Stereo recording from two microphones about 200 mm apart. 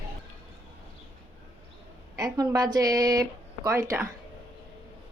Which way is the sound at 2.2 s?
20° right (ahead or behind).